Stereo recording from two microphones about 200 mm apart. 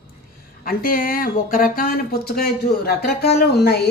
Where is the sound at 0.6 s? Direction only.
45° left (ahead or behind).